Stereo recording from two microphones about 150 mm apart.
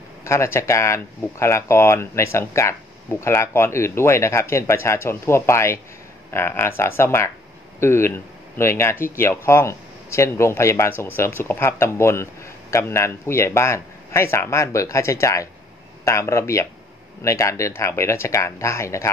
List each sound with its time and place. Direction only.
0.2 s speech: 20° left (ahead or behind)